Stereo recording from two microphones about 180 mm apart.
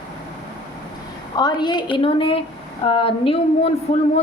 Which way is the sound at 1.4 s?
25° left (ahead or behind).